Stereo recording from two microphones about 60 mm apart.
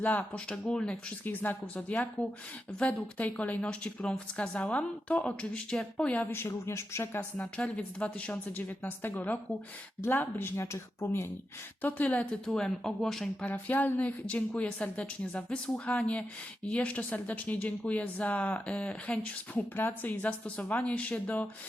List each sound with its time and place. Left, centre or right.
0.0 s speech: left
0.3 s a woman's voice: centre
1.2 s a woman's voice: left
6.5 s speech: left
7.4 s a woman's voice: centre; by 11.3 s left
11.8 s speech: left
12.5 s a woman's voice: centre
13.4 s speech: left
14.3 s speech: centre
19.7 s speech: left